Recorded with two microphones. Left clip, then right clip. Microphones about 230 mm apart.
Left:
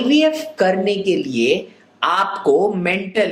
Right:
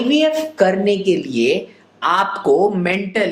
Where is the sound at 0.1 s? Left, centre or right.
Right.